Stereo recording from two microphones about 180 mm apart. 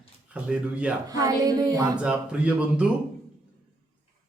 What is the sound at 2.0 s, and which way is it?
Speech, 5° right (ahead or behind).